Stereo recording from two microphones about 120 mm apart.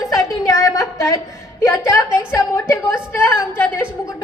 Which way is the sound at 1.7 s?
25° left (ahead or behind).